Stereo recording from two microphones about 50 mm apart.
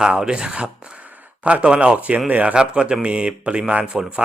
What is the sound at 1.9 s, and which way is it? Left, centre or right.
Speech, right.